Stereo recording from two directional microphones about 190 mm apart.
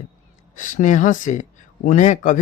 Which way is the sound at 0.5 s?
45° left (ahead or behind).